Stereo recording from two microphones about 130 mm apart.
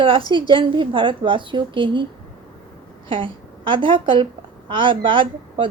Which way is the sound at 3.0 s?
40° right (ahead or behind).